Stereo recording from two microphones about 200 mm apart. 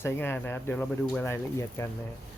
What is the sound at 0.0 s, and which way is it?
Speech, 10° left (ahead or behind).